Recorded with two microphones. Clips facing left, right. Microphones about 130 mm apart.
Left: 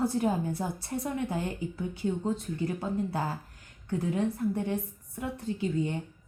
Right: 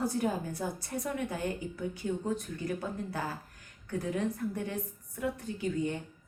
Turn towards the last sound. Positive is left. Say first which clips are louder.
# left 2 dB
turn(degrees=25)  # may be behind; listen again after turning